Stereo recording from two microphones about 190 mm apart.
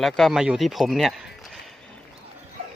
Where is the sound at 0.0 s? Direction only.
Centre (ahead or behind).